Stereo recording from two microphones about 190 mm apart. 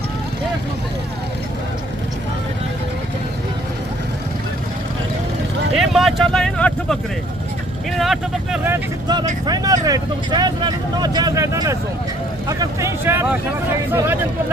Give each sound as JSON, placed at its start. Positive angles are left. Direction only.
{"t": 5.7, "sound": "vehicle", "side_deg": 0}
{"t": 7.9, "sound": "speech", "side_deg": 0}
{"t": 8.6, "sound": "speech", "side_deg": -10}